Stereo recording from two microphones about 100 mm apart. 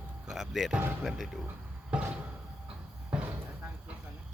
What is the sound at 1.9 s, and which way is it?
Cupboard open or close, 10° right (ahead or behind).